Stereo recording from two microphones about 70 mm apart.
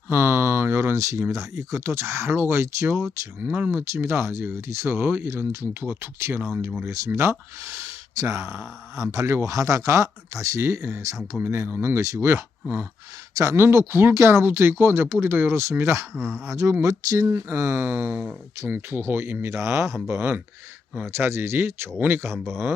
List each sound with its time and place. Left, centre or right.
0.1 s a sound: right
1.3 s speech: right
3.4 s speech: right
3.7 s speech: right
6.8 s speech: right
13.3 s speech: right
13.6 s speech: right
17.3 s speech: right